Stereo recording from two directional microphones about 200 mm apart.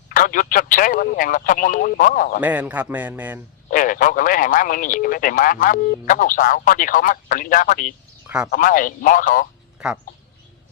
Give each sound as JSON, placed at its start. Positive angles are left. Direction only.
{"t": 0.1, "sound": "speech", "side_deg": 40}
{"t": 2.4, "sound": "a man's voice", "side_deg": -10}
{"t": 3.7, "sound": "speech", "side_deg": 40}
{"t": 9.7, "sound": "speech", "side_deg": -5}